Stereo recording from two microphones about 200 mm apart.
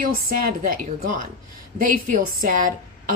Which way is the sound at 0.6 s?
45° right (ahead or behind).